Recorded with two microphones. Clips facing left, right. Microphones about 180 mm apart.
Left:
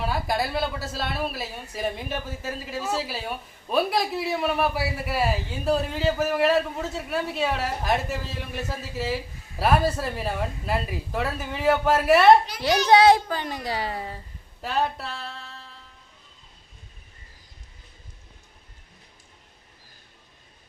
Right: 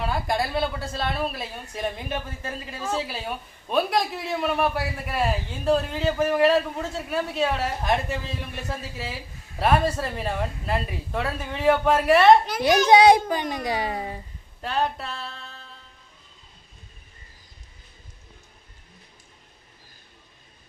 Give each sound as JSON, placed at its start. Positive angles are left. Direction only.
{"t": 0.0, "sound": "speech", "side_deg": 5}
{"t": 12.9, "sound": "a child's voice", "side_deg": -15}
{"t": 14.6, "sound": "speech", "side_deg": 0}